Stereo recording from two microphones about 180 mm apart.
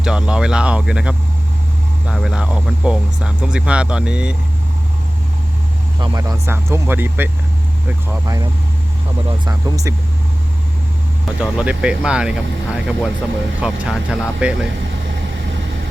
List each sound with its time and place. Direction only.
0.0 s speech: 5° right (ahead or behind)
6.0 s speech: 20° right (ahead or behind)
9.5 s speech: 20° right (ahead or behind)
11.3 s speech: 5° right (ahead or behind)